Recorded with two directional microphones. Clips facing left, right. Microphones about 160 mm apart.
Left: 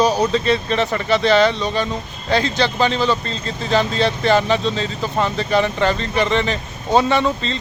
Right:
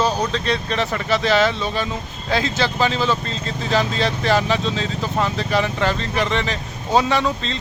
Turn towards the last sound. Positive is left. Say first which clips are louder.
# left 2 dB
turn(degrees=0)  # may be behind; listen again after turning